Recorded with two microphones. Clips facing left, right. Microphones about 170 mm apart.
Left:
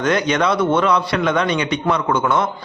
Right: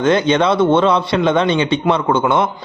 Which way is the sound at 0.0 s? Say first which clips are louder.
Right 4 dB; 25° right (ahead or behind).